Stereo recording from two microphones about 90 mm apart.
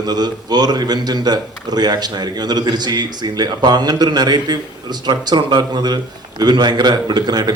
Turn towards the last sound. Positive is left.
turn(degrees=-50)  # may be behind; listen again after turning